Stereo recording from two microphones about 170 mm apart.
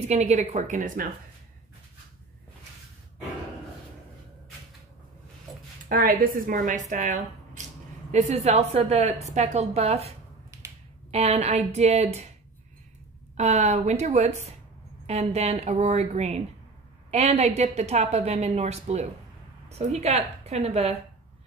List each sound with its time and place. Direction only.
0.0 s a woman's voice: 40° right (ahead or behind)
5.9 s a woman's voice: 60° right (ahead or behind); by 12.3 s 40° right (ahead or behind)
13.4 s a woman's voice: 40° right (ahead or behind)